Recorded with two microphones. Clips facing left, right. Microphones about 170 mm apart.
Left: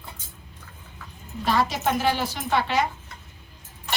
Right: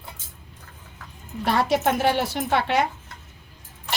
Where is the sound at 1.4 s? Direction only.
60° right (ahead or behind).